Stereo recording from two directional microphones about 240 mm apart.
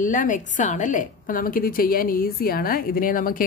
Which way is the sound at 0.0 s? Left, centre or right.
Left.